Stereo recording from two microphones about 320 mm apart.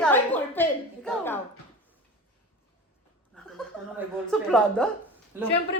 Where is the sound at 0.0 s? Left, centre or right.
Centre.